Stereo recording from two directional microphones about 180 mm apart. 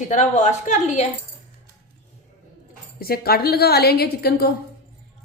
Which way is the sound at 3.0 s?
55° left (ahead or behind).